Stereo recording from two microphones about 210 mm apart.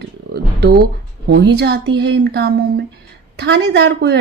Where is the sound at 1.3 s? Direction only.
55° right (ahead or behind).